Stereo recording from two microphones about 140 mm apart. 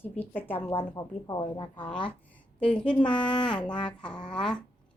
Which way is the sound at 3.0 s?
35° left (ahead or behind).